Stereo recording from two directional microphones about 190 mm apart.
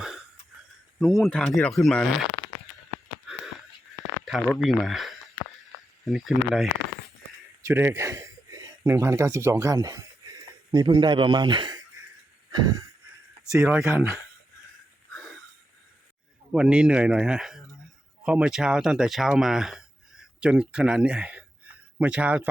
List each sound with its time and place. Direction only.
0.9 s speech: centre (ahead or behind)
4.3 s a man's voice: centre (ahead or behind); by 11.8 s 25° right (ahead or behind)
12.5 s a sound: 20° right (ahead or behind)
13.6 s speech: 10° right (ahead or behind)
16.5 s speech: 5° right (ahead or behind)